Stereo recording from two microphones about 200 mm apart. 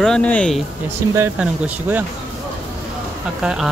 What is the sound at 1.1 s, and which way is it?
Speech, 10° right (ahead or behind).